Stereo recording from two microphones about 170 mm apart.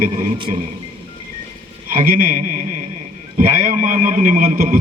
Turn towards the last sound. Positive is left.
turn(degrees=-50)  # may be behind; listen again after turning